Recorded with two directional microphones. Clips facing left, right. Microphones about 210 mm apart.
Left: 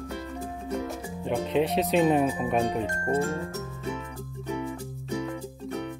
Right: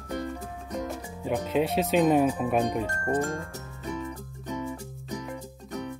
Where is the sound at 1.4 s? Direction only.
Centre (ahead or behind).